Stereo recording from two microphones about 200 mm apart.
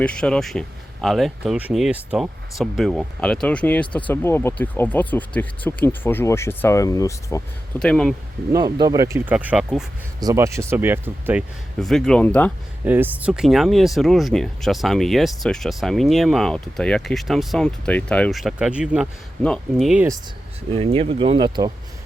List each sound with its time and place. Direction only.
0.0 s speech: 5° left (ahead or behind)
7.8 s speech: 5° left (ahead or behind)
8.5 s speech: 20° right (ahead or behind); by 9.8 s 5° right (ahead or behind)
10.2 s speech: 15° right (ahead or behind)
11.8 s speech: centre (ahead or behind)
12.8 s speech: 10° right (ahead or behind)
20.7 s speech: 30° right (ahead or behind)